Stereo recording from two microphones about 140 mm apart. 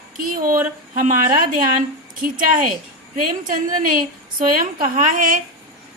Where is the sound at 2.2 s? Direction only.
80° right.